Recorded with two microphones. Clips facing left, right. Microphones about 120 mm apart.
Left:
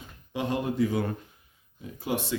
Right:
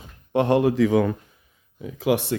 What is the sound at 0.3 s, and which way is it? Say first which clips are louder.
Speech: right 9 dB; 70° right (ahead or behind).